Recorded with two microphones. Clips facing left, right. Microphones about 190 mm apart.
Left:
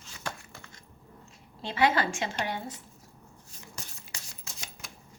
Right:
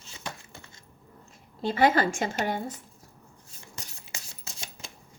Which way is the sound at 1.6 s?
45° right (ahead or behind).